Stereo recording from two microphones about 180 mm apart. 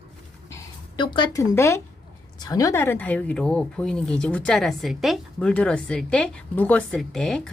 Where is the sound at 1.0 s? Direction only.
25° left (ahead or behind).